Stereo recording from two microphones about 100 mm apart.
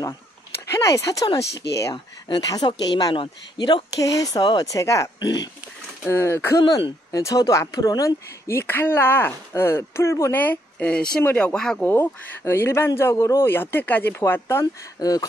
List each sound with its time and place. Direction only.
0.7 s speech: 30° left (ahead or behind)
2.2 s speech: 45° left (ahead or behind)
3.2 s speech: 50° left (ahead or behind)
4.0 s speech: 35° left (ahead or behind)
6.6 s speech: 50° left (ahead or behind)
7.1 s speech: 35° left (ahead or behind)
8.5 s speech: 25° left (ahead or behind); by 11.8 s 5° left (ahead or behind)
11.8 s speech: 20° left (ahead or behind)
15.0 s a sound: 40° left (ahead or behind)